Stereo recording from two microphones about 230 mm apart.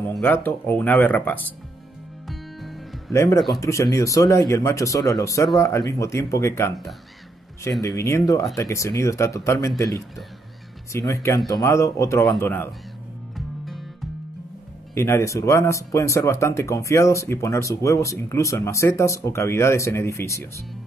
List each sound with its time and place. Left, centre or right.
0.0 s speech: centre
2.2 s music: centre
3.1 s speech: centre
3.3 s speech: centre
3.6 s speech: centre
7.8 s speech: centre
15.0 s speech: centre